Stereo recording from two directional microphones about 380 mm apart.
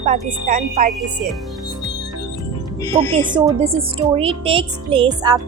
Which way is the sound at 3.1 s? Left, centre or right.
Centre.